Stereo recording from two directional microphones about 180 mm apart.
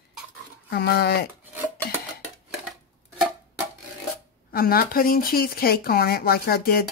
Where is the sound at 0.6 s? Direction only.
60° left (ahead or behind).